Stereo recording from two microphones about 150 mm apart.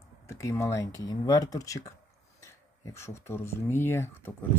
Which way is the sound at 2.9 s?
20° left (ahead or behind).